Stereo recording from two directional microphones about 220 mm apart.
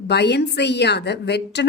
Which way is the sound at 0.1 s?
50° left (ahead or behind).